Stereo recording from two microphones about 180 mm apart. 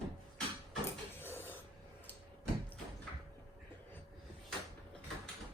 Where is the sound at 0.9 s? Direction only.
10° left (ahead or behind).